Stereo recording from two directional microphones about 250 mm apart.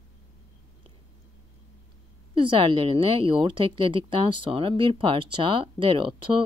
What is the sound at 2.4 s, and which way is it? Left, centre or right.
Speech, centre.